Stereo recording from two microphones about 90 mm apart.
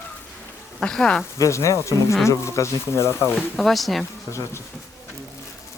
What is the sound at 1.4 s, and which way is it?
Speech, 35° left (ahead or behind).